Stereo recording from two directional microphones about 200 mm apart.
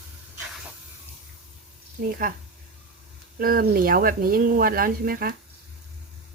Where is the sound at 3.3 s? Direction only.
45° right (ahead or behind).